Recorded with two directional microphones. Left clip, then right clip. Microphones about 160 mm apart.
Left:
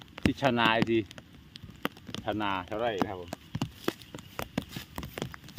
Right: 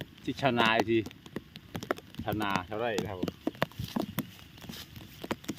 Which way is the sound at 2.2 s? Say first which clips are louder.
Left 2 dB; 20° left (ahead or behind).